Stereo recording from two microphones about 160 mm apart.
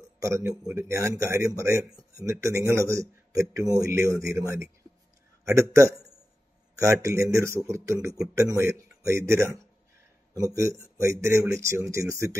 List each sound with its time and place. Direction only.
0.2 s a man's voice: 20° right (ahead or behind)